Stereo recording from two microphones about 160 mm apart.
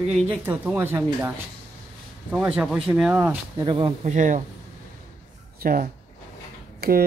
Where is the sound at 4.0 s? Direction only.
50° right (ahead or behind).